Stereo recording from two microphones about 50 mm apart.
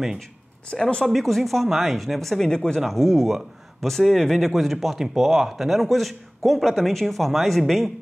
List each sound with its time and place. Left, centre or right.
0.7 s speech: centre
2.8 s speech: centre